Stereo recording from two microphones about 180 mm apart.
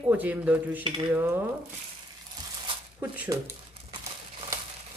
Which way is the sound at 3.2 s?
20° right (ahead or behind).